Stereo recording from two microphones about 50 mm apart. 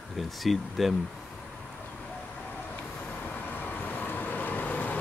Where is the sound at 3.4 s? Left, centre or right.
Left.